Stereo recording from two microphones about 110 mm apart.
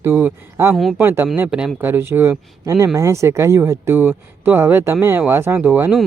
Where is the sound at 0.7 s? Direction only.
Centre (ahead or behind).